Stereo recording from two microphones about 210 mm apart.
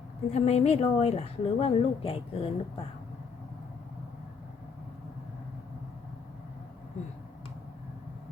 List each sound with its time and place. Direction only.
0.3 s a woman's voice: 30° left (ahead or behind)